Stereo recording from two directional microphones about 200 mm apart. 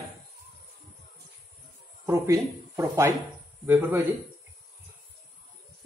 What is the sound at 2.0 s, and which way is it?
Speech, 15° right (ahead or behind).